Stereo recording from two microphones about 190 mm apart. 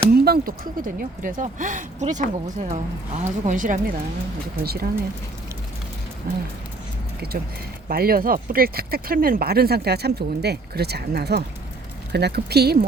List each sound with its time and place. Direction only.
0.3 s speech: 50° right (ahead or behind)
4.6 s speech: 55° right (ahead or behind)
6.3 s speech: 50° right (ahead or behind)
7.9 s speech: 50° right (ahead or behind)